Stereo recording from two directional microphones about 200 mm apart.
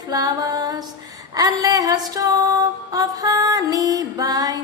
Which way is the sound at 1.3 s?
20° right (ahead or behind).